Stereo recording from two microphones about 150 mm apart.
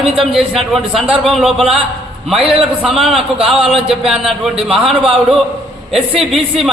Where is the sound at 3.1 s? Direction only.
40° right (ahead or behind).